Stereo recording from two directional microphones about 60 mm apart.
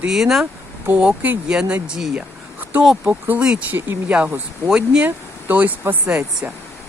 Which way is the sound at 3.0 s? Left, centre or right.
Right.